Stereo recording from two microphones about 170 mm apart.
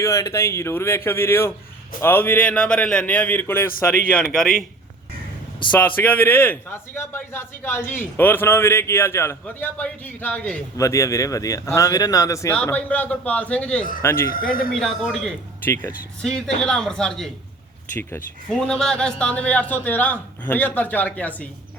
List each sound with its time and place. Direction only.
0.0 s a man's voice: 15° left (ahead or behind)
5.8 s a man's voice: 10° left (ahead or behind)
10.8 s a man's voice: 20° left (ahead or behind)
14.3 s speech: 60° left (ahead or behind)
14.7 s a man's voice: centre (ahead or behind)
15.6 s a man's voice: 10° left (ahead or behind)